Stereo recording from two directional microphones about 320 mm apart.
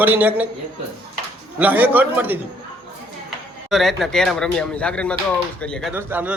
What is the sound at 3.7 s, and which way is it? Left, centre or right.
Speech, centre.